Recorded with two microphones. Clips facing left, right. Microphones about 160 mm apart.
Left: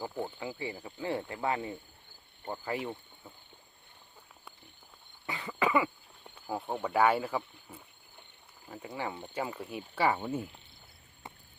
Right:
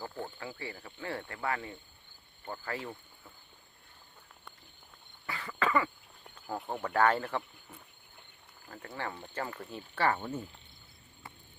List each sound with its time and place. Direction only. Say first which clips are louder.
0.0 s speech: left 4 dB; 15° left (ahead or behind)
5.2 s speech: left 2 dB; 20° left (ahead or behind)